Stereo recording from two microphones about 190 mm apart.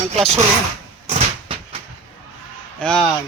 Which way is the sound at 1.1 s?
30° right (ahead or behind).